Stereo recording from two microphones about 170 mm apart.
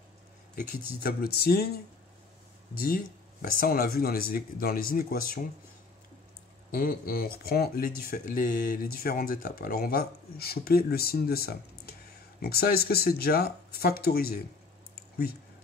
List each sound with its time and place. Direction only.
0.6 s speech: 60° left (ahead or behind)
3.5 s speech: 60° left (ahead or behind)
6.7 s speech: 55° left (ahead or behind)